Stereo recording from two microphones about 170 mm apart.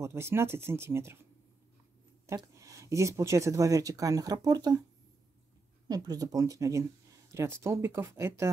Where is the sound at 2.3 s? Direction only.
20° right (ahead or behind).